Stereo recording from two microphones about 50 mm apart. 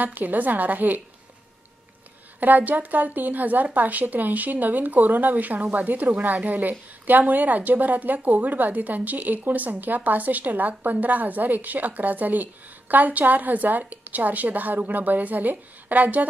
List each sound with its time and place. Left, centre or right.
0.0 s a woman's voice: right
2.4 s a woman's voice: right